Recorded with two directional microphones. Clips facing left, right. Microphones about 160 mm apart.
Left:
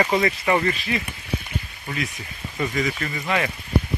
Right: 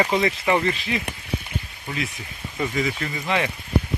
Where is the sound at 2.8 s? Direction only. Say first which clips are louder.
Even; 15° right (ahead or behind).